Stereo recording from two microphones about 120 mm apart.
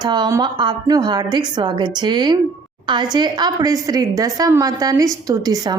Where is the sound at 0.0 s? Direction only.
35° right (ahead or behind).